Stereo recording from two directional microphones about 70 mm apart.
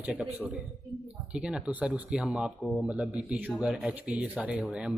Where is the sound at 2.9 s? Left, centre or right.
Centre.